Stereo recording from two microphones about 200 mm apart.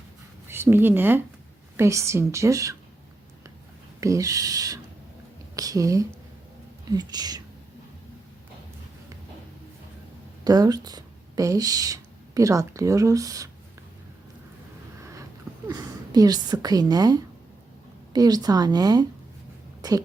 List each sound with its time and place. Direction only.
0.4 s a woman's voice: 10° right (ahead or behind)
4.0 s a woman's voice: 15° right (ahead or behind)
10.4 s speech: 20° right (ahead or behind)
15.6 s a woman's voice: 15° right (ahead or behind)